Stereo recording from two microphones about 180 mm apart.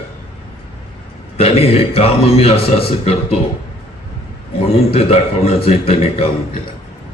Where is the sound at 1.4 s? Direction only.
35° left (ahead or behind).